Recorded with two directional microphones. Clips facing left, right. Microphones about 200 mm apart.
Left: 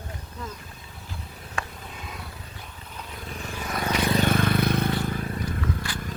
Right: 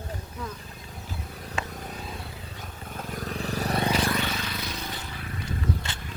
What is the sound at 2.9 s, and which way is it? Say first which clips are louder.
Vehicle: right 6 dB; 45° right (ahead or behind).